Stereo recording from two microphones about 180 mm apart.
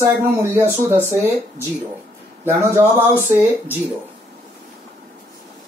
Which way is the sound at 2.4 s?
15° right (ahead or behind).